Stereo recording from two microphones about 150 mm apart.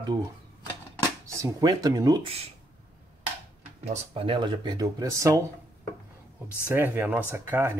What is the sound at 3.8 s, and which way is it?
Speech, 35° right (ahead or behind).